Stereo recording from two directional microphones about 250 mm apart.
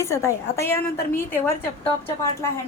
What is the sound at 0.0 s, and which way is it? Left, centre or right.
A woman's voice, centre.